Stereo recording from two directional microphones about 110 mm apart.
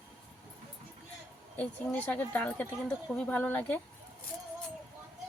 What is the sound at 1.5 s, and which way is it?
Speech, 15° left (ahead or behind).